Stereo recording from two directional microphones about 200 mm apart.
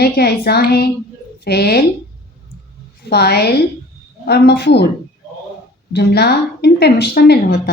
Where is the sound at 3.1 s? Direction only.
55° left (ahead or behind).